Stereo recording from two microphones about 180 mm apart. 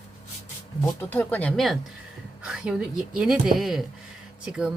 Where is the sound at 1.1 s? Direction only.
10° left (ahead or behind).